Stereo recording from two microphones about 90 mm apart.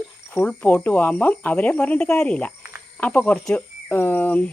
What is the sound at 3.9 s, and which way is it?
Speech, 25° left (ahead or behind).